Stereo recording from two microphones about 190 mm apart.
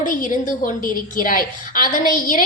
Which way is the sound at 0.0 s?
45° left (ahead or behind).